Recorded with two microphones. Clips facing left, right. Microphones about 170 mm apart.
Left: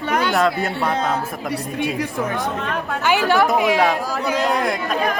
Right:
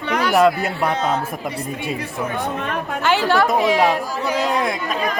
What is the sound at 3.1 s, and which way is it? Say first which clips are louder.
Speech: even; 15° left (ahead or behind).